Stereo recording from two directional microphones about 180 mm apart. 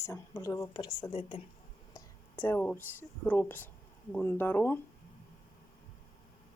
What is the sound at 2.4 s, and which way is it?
Speech, 10° left (ahead or behind).